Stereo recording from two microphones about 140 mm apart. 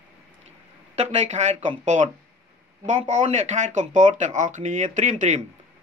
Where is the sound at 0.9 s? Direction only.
55° right (ahead or behind).